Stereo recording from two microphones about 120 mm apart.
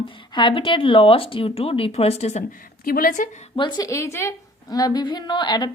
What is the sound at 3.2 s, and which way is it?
Speech, 90° left.